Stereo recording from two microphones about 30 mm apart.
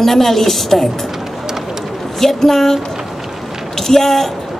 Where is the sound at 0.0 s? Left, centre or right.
Centre.